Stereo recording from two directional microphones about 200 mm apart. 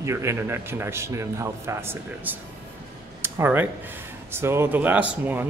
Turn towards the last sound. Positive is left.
turn(degrees=-10)  # may be behind; listen again after turning